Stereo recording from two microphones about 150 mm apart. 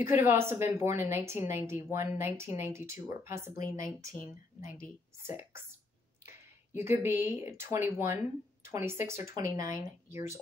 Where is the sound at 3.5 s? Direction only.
70° left (ahead or behind).